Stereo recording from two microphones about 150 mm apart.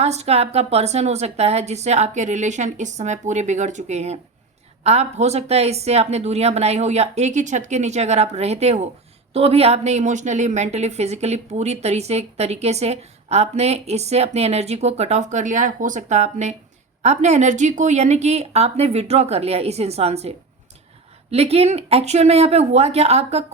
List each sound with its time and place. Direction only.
0.0 s a woman's voice: 45° right (ahead or behind)